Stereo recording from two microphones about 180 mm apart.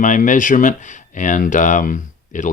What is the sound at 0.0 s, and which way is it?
Speech, 45° left (ahead or behind).